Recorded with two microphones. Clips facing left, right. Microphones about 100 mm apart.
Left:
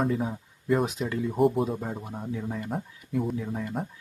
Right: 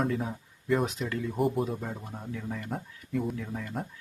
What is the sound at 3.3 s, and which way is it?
Speech, 15° left (ahead or behind).